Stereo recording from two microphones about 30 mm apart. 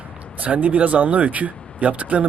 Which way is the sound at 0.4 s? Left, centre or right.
Right.